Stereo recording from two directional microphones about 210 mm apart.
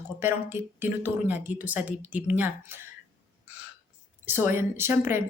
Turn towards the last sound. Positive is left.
turn(degrees=-10)  # may be behind; listen again after turning